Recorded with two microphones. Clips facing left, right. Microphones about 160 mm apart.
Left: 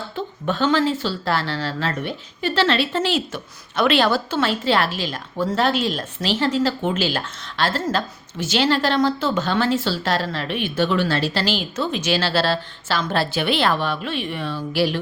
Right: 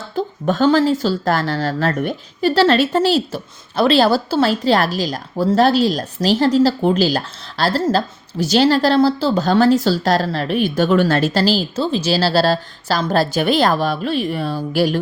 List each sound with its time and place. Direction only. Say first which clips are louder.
0.2 s speech: right 6 dB; 40° right (ahead or behind)